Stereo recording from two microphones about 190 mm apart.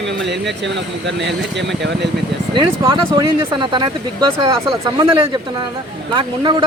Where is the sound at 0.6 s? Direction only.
70° right (ahead or behind).